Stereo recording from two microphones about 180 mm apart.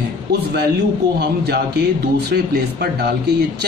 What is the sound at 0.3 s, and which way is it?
A man's voice, 65° right (ahead or behind).